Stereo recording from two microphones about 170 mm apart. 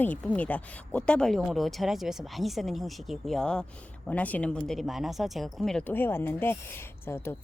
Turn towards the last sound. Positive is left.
turn(degrees=15)  # may be behind; listen again after turning